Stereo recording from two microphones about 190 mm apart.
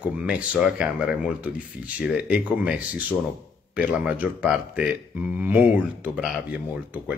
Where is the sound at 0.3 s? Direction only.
5° right (ahead or behind).